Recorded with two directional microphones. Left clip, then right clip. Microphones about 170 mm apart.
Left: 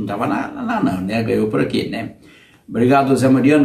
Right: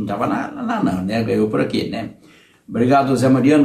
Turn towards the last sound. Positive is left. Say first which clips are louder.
# left 1 dB
turn(degrees=0)  # may be behind; listen again after turning